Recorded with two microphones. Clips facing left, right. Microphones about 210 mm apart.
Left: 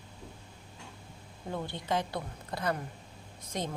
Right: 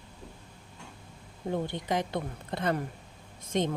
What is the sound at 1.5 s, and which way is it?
A woman's voice, 15° right (ahead or behind).